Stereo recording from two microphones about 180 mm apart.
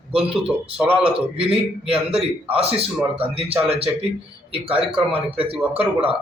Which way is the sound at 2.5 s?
35° right (ahead or behind).